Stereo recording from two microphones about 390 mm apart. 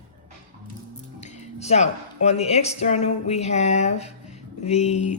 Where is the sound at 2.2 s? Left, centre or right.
Centre.